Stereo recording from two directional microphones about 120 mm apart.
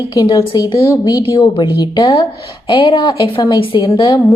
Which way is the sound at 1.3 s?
45° left (ahead or behind).